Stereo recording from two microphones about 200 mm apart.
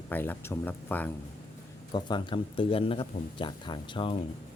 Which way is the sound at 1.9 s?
20° left (ahead or behind).